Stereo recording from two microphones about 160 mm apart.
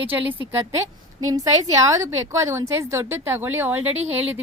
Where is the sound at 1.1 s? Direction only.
20° right (ahead or behind).